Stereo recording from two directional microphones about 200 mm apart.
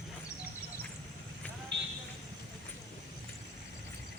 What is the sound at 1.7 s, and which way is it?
Vehicle, 60° right (ahead or behind).